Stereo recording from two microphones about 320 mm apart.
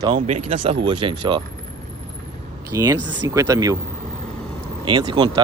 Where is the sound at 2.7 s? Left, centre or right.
Centre.